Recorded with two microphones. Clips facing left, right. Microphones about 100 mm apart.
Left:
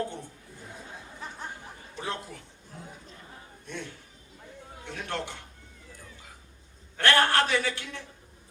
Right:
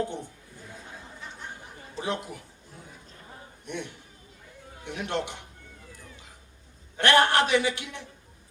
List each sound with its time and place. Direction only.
0.0 s a sound: 20° right (ahead or behind)
2.0 s a man's voice: 20° right (ahead or behind)
3.7 s a man's voice: 20° right (ahead or behind)
6.9 s a man's voice: 20° right (ahead or behind)